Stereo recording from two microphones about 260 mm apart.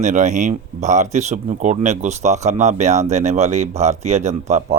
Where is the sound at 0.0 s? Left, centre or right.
Right.